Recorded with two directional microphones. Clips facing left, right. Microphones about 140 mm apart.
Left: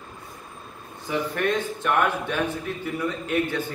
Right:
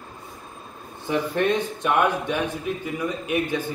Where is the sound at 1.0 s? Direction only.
20° right (ahead or behind).